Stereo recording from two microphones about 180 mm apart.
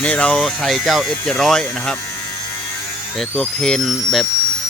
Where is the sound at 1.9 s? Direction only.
15° left (ahead or behind).